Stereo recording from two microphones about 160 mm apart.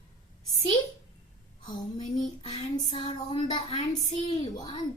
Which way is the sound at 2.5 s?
25° left (ahead or behind).